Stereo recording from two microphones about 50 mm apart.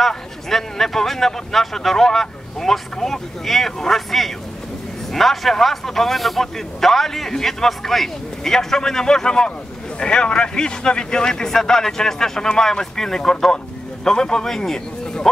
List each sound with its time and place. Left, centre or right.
0.1 s a man's voice: centre